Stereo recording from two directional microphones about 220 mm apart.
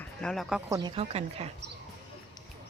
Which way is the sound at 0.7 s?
20° right (ahead or behind).